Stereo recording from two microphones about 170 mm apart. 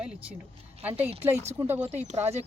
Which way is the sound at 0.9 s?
35° right (ahead or behind).